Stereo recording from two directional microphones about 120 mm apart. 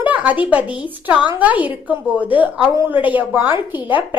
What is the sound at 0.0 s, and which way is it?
A woman's voice, 10° right (ahead or behind).